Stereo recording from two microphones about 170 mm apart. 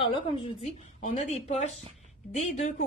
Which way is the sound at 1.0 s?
40° left (ahead or behind).